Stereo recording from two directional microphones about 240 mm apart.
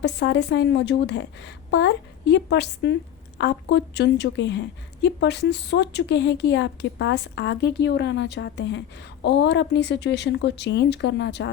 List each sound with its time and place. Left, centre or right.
0.0 s speech: left